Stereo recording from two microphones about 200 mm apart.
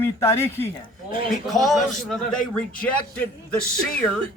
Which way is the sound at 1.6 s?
Centre (ahead or behind).